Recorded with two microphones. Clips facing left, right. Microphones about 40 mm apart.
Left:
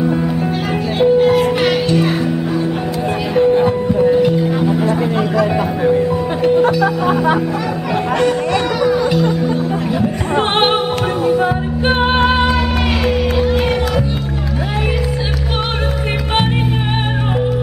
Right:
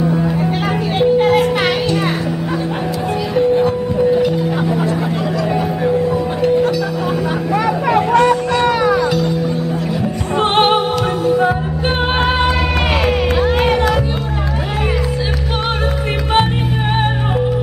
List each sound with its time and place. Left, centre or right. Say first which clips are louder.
0.9 s children playing: left 1 dB; centre
3.3 s music: left 2 dB; centre
9.0 s music: left 1 dB; centre
10.3 s music: right 2 dB; centre
13.5 s run: right 1 dB; right